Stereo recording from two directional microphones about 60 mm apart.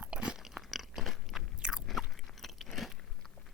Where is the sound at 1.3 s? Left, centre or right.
Centre.